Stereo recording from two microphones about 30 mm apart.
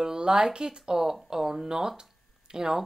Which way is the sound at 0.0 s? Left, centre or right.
Right.